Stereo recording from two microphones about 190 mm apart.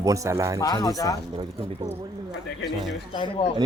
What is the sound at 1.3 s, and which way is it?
Speech, 30° right (ahead or behind).